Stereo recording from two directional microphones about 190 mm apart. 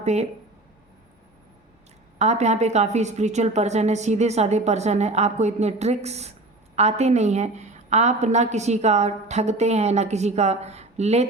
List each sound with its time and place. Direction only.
0.0 s speech: 35° right (ahead or behind)
2.1 s a woman's voice: 35° right (ahead or behind)